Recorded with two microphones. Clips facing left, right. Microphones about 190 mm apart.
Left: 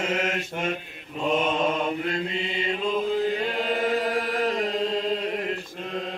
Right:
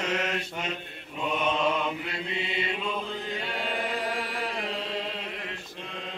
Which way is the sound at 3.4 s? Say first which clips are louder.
Left 6 dB; 40° left (ahead or behind).